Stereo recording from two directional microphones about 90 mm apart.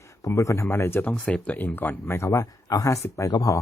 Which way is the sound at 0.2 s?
35° left (ahead or behind).